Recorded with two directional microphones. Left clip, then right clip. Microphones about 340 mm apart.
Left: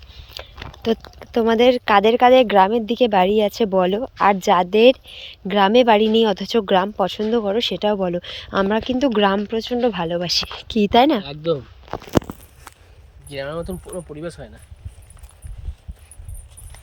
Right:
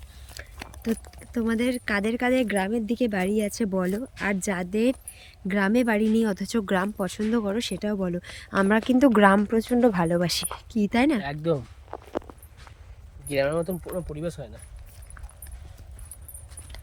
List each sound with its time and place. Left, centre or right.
0.5 s a sound: right
0.8 s speech: centre
10.6 s speech: centre
11.2 s speech: right
13.6 s speech: centre